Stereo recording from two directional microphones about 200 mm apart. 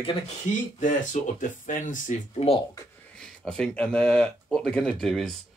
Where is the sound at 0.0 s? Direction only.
30° left (ahead or behind).